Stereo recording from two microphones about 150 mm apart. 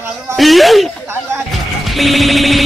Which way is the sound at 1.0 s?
15° right (ahead or behind).